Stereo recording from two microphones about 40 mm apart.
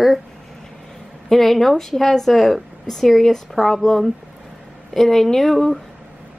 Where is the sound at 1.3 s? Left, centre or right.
Centre.